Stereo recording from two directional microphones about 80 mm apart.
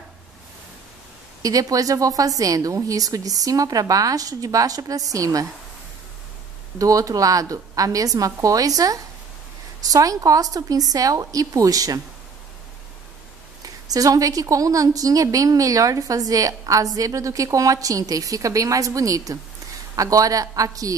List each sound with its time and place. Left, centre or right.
1.4 s a woman's voice: right
6.8 s a woman's voice: right
13.8 s a woman's voice: right